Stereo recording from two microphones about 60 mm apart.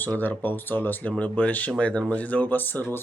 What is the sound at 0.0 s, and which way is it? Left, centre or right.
Speech, left.